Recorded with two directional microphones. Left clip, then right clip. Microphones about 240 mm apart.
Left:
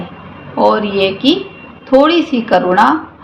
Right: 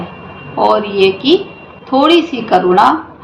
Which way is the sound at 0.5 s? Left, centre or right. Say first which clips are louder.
Even; left.